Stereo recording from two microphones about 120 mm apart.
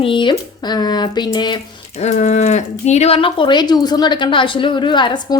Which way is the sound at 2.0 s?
80° left.